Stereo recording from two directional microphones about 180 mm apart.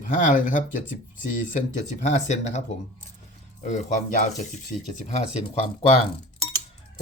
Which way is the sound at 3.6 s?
45° left (ahead or behind).